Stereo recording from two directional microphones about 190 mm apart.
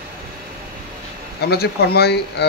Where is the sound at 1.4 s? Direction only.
55° left (ahead or behind).